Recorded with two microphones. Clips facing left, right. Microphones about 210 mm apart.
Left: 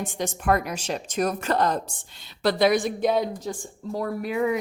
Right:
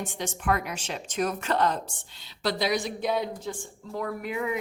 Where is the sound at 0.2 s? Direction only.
40° left (ahead or behind).